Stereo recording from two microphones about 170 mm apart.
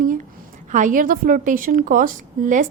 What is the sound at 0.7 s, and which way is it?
A woman's voice, 50° right (ahead or behind).